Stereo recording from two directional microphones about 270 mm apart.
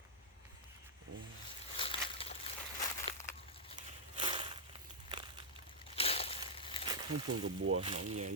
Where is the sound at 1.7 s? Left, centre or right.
Left.